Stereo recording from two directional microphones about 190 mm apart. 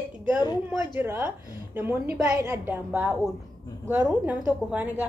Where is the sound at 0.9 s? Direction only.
10° right (ahead or behind).